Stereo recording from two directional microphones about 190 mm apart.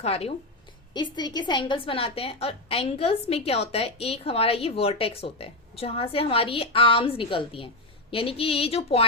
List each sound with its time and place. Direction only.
0.0 s a woman's voice: 30° left (ahead or behind)